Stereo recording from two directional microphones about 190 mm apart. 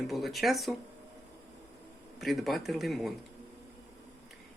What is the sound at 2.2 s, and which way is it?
Speech, centre (ahead or behind).